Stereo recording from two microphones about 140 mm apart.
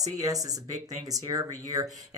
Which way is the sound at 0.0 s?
25° right (ahead or behind).